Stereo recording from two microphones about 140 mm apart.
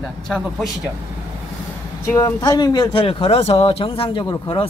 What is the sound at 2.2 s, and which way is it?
Speech, 25° left (ahead or behind).